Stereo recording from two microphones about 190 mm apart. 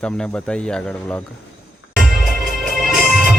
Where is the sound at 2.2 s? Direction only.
Centre (ahead or behind).